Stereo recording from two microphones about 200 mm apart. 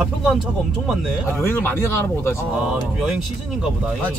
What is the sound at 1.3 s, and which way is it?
Speech, 10° left (ahead or behind).